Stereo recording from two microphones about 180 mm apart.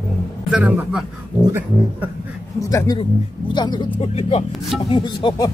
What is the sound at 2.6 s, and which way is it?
Speech, 15° left (ahead or behind).